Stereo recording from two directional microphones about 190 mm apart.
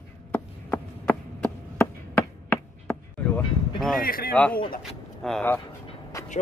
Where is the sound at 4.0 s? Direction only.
50° left (ahead or behind).